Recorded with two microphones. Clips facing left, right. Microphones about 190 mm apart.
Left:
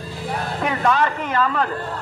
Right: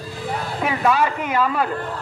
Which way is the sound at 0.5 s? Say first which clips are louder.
Right 1 dB; 5° right (ahead or behind).